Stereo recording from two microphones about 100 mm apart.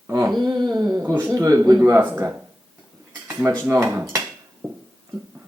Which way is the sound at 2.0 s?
25° right (ahead or behind).